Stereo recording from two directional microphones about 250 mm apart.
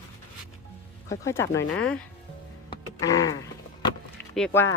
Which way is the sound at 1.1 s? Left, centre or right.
Centre.